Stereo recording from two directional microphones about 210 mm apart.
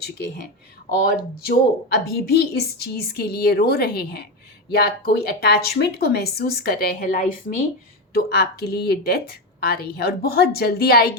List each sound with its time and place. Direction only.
1.5 s a woman's voice: 45° left (ahead or behind)